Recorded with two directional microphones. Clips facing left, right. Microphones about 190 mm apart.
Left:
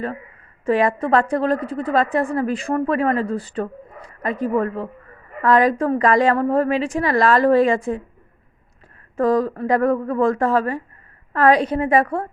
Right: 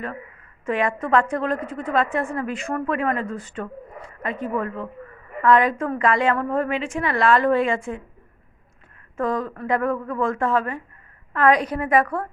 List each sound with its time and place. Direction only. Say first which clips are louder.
0.6 s a woman's voice: left 5 dB; 35° left (ahead or behind)
9.1 s a woman's voice: left 7 dB; 35° left (ahead or behind)